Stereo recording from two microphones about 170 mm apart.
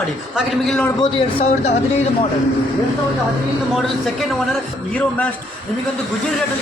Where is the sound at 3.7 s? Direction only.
Centre (ahead or behind).